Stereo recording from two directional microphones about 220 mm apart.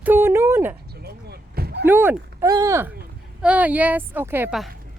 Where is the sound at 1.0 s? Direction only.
45° right (ahead or behind).